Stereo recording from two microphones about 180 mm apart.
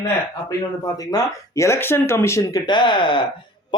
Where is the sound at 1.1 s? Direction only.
20° left (ahead or behind).